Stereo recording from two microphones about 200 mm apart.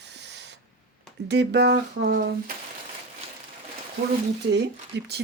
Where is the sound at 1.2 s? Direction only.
60° right (ahead or behind).